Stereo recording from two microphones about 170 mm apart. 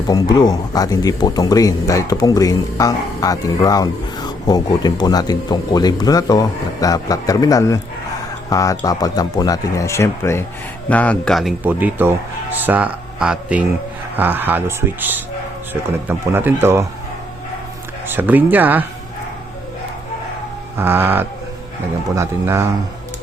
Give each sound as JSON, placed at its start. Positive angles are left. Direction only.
{"t": 0.1, "sound": "speech", "side_deg": 25}
{"t": 11.6, "sound": "speech", "side_deg": -10}
{"t": 18.1, "sound": "speech", "side_deg": -10}
{"t": 20.7, "sound": "speech", "side_deg": -10}